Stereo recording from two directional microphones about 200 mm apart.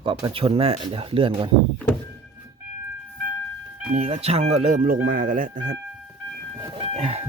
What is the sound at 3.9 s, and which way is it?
Speech, 30° right (ahead or behind).